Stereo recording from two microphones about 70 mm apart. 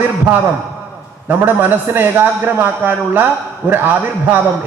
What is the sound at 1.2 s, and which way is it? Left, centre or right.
A man's voice, right.